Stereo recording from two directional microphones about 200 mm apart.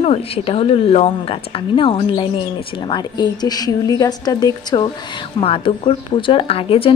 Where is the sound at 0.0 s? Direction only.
30° left (ahead or behind).